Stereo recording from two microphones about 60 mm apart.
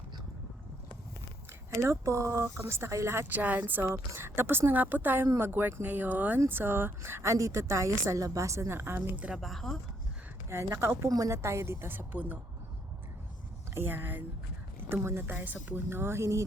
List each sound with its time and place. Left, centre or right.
2.0 s a woman's voice: right
3.2 s a woman's voice: right
5.8 s a woman's voice: right
9.4 s speech: centre
10.5 s a woman's voice: right
13.7 s a woman's voice: right
15.3 s speech: right
15.9 s a woman's voice: right